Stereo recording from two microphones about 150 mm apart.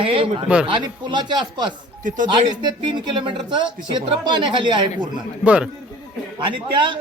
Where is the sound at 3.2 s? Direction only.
30° right (ahead or behind).